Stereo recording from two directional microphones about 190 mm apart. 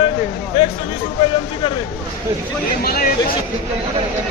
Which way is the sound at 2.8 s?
55° left (ahead or behind).